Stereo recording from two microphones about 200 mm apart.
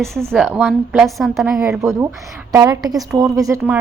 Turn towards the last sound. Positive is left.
turn(degrees=-10)  # may be behind; listen again after turning